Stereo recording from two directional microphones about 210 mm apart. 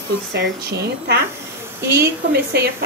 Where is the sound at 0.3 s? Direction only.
50° right (ahead or behind).